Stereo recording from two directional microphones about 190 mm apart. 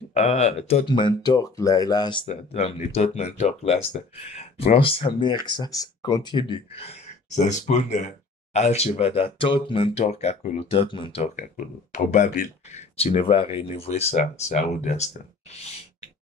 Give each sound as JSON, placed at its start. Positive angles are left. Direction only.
{"t": 0.1, "sound": "speech", "side_deg": 35}
{"t": 2.2, "sound": "speech", "side_deg": 30}
{"t": 11.4, "sound": "speech", "side_deg": 40}